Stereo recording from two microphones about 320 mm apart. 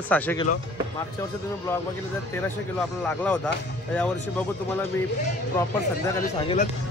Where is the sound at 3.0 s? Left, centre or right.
Centre.